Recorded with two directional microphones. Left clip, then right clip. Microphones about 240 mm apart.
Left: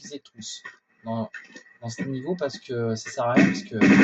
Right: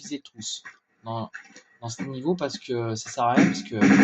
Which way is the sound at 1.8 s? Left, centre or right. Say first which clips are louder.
Right 2 dB; right.